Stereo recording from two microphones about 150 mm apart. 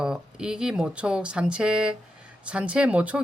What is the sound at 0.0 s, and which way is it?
Speech, 5° right (ahead or behind).